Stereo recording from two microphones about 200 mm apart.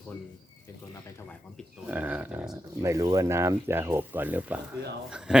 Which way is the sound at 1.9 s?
10° right (ahead or behind).